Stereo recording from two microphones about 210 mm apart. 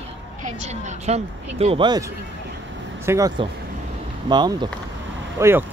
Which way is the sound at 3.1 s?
15° right (ahead or behind).